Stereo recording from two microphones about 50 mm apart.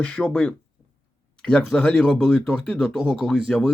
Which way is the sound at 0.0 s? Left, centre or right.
Left.